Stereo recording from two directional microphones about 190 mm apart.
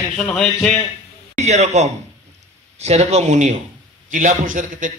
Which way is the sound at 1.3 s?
35° right (ahead or behind).